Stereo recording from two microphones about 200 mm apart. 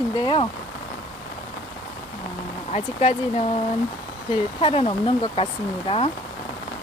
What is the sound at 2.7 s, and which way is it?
Speech, 30° left (ahead or behind).